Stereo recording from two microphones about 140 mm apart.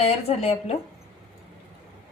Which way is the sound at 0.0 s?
50° left (ahead or behind).